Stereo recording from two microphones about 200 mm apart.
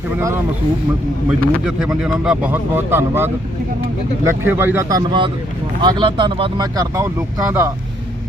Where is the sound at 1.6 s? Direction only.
5° right (ahead or behind).